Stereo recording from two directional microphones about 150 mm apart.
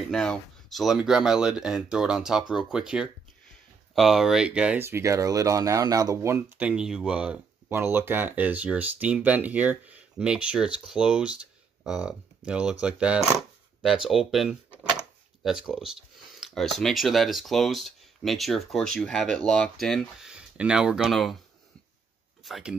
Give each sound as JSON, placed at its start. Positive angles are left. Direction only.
{"t": 0.1, "sound": "speech", "side_deg": 5}
{"t": 6.6, "sound": "speech", "side_deg": -5}
{"t": 22.4, "sound": "speech", "side_deg": -5}